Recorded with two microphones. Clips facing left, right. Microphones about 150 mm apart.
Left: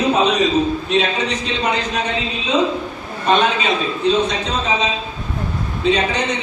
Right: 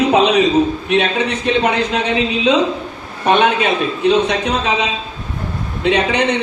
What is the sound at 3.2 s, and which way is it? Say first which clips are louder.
A man's voice: right 3 dB; 65° right (ahead or behind).